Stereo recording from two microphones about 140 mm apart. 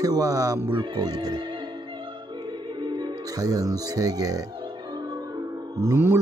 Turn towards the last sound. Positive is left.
turn(degrees=-20)  # may be behind; listen again after turning